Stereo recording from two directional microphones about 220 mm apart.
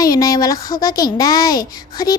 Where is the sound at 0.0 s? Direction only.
15° left (ahead or behind).